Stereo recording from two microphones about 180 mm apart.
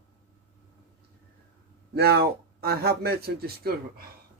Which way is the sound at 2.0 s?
60° right (ahead or behind).